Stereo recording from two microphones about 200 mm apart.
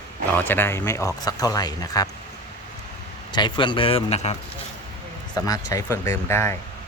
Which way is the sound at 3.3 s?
20° left (ahead or behind).